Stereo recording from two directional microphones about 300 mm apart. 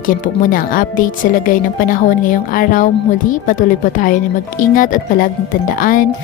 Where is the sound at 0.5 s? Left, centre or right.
Left.